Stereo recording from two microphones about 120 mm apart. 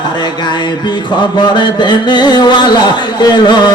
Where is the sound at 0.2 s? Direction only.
40° left (ahead or behind).